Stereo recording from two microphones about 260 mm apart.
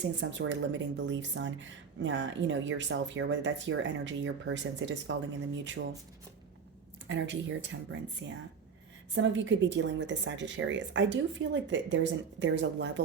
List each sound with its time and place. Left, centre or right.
0.0 s a woman's voice: right
7.1 s a woman's voice: right